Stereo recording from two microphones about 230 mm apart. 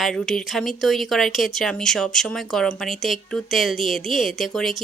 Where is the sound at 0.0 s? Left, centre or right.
Centre.